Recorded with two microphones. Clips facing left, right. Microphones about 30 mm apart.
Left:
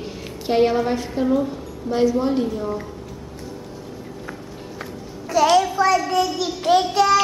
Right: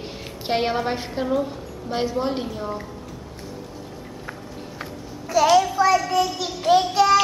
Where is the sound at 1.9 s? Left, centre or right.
Right.